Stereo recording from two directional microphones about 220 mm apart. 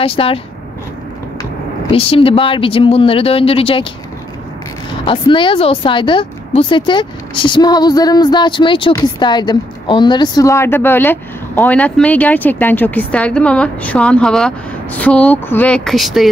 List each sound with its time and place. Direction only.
0.0 s speech: 25° left (ahead or behind)
1.4 s speech: 25° left (ahead or behind)
5.0 s speech: 20° left (ahead or behind); by 16.3 s centre (ahead or behind)